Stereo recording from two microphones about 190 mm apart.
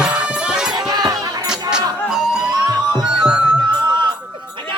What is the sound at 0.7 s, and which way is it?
Music, 20° right (ahead or behind).